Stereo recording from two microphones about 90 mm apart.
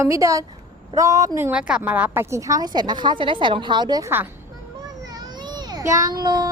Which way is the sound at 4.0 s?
25° right (ahead or behind).